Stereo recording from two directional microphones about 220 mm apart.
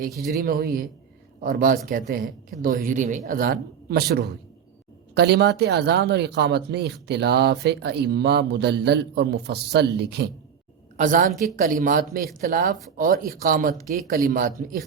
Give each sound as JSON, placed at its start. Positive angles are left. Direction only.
{"t": 0.1, "sound": "speech", "side_deg": 0}
{"t": 0.4, "sound": "speech", "side_deg": -40}
{"t": 10.9, "sound": "a woman's voice", "side_deg": -35}